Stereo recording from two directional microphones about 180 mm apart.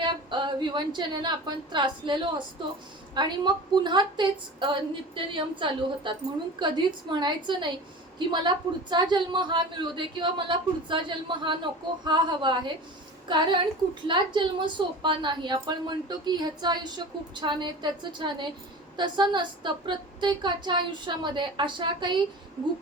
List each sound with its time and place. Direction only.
0.0 s a woman's voice: 25° right (ahead or behind)